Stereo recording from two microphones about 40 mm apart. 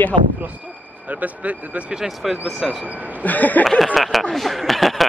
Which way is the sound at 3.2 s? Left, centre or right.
Left.